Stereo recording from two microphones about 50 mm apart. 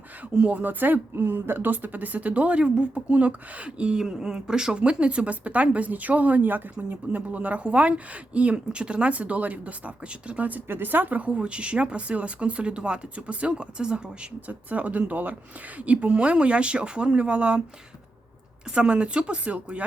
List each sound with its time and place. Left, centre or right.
0.3 s a woman's voice: right
4.0 s a woman's voice: centre; by 6.6 s right
6.7 s a woman's voice: right
10.7 s a woman's voice: right; by 14.0 s centre
14.4 s a woman's voice: right
18.7 s a woman's voice: right